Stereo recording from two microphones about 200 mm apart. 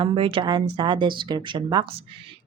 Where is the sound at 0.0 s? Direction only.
25° right (ahead or behind).